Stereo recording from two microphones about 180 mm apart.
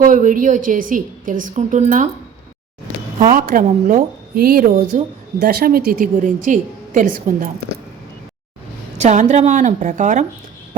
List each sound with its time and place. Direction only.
0.0 s speech: 45° right (ahead or behind)
3.2 s speech: 50° right (ahead or behind)
9.0 s speech: 40° right (ahead or behind)